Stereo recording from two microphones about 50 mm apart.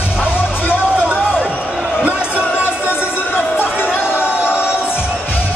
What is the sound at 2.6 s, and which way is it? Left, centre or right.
Music, left.